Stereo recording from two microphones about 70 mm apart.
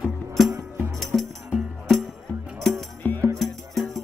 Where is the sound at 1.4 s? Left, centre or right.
Centre.